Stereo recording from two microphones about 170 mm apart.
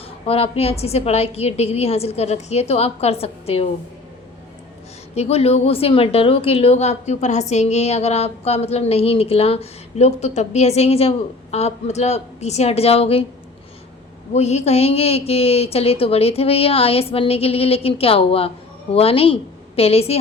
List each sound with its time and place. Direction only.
0.0 s a woman's voice: 35° left (ahead or behind)
5.1 s a woman's voice: 35° left (ahead or behind)
14.3 s a woman's voice: 40° left (ahead or behind)